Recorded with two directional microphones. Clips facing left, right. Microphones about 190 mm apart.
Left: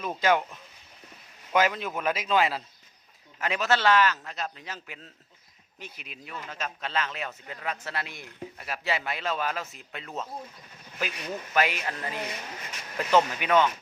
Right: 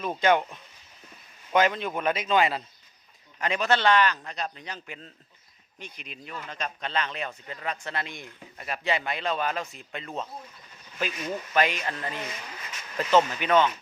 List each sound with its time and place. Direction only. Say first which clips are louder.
0.0 s a man's voice: right 2 dB; centre (ahead or behind)
11.5 s speech: right 1 dB; 10° left (ahead or behind)